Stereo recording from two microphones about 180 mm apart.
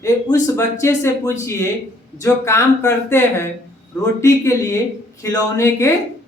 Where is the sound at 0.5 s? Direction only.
15° left (ahead or behind).